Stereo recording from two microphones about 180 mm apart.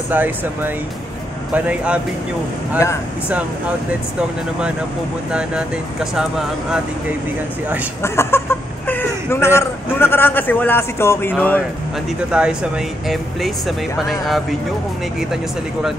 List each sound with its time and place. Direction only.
0.1 s speech: 10° right (ahead or behind)
5.3 s speech: 5° right (ahead or behind)
8.0 s speech: 15° left (ahead or behind)
12.3 s speech: 5° right (ahead or behind)